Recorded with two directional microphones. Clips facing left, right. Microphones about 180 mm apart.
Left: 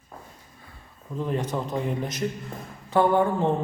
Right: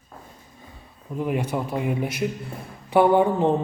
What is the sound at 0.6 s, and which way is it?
A man's voice, 15° right (ahead or behind).